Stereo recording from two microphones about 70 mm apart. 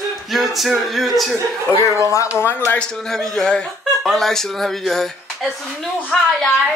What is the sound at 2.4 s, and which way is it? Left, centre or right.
Speech, left.